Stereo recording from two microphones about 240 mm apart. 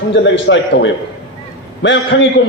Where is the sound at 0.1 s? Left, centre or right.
Left.